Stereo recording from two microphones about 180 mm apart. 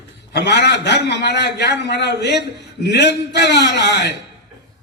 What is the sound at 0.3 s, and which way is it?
A man's voice, 70° left (ahead or behind).